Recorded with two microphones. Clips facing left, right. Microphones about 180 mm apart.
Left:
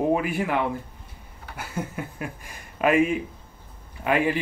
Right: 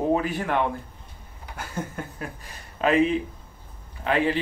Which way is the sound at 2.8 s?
10° left (ahead or behind).